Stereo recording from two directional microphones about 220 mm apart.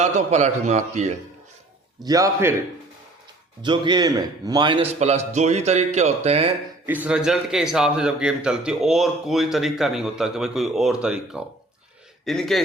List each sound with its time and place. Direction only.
0.0 s a man's voice: 30° right (ahead or behind)
2.0 s a man's voice: 15° right (ahead or behind)
3.6 s a man's voice: 20° right (ahead or behind)
6.8 s a man's voice: 5° right (ahead or behind)